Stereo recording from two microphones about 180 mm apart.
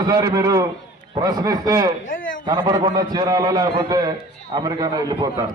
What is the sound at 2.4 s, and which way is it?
A man's voice, 25° right (ahead or behind).